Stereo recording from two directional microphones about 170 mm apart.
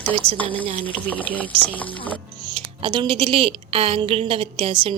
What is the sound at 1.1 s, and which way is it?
Speech, 10° left (ahead or behind).